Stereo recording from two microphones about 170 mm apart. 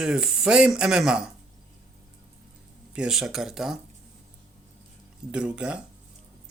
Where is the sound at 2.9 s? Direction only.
5° right (ahead or behind).